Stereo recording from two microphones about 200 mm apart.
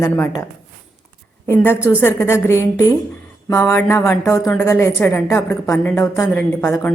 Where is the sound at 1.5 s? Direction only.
10° left (ahead or behind).